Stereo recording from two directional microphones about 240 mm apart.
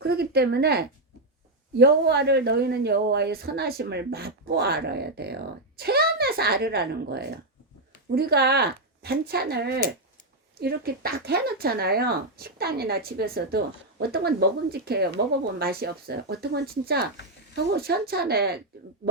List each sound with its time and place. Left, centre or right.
0.0 s a woman's voice: right